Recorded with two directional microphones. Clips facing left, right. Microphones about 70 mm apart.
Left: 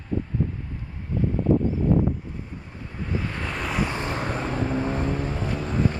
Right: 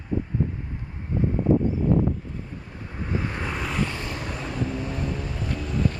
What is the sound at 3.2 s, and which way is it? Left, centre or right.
Vehicle, right.